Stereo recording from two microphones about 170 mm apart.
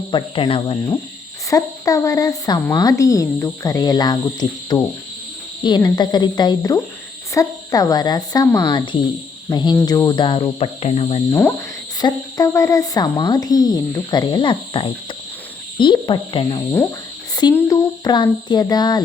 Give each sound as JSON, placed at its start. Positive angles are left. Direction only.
{"t": 0.1, "sound": "speech", "side_deg": 30}
{"t": 1.5, "sound": "a woman's voice", "side_deg": 20}
{"t": 11.3, "sound": "speech", "side_deg": 10}
{"t": 11.9, "sound": "a woman's voice", "side_deg": 25}